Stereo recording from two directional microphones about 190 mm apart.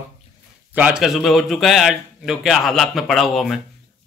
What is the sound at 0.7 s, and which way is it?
A man's voice, 5° right (ahead or behind).